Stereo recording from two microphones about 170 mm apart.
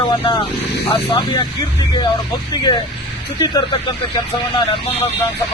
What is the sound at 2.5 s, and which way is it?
A man's voice, 25° left (ahead or behind).